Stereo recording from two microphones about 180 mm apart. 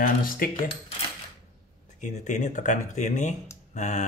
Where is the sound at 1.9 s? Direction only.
45° left (ahead or behind).